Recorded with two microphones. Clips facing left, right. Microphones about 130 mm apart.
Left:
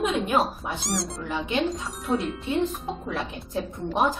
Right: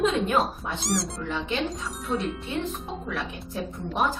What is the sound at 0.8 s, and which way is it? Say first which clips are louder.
Speech: right 3 dB; centre (ahead or behind).